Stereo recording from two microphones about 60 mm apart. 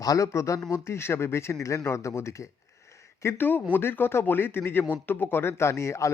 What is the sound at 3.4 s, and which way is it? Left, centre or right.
Speech, left.